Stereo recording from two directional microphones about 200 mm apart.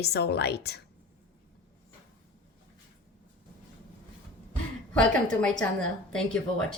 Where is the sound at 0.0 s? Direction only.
55° left (ahead or behind).